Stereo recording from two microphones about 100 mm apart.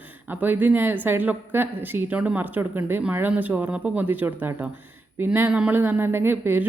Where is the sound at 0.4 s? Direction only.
20° right (ahead or behind).